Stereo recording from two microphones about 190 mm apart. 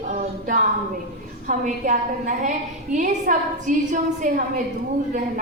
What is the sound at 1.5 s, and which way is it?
A woman's voice, 40° right (ahead or behind).